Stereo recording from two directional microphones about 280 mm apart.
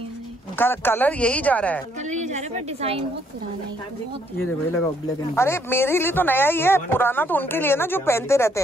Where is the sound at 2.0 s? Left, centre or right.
Right.